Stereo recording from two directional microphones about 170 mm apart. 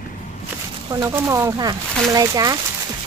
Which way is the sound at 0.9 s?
20° right (ahead or behind).